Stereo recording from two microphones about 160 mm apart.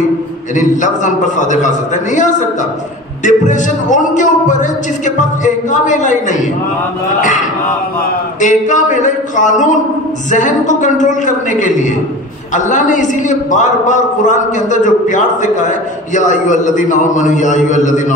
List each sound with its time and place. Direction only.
0.6 s a man's voice: 50° left (ahead or behind)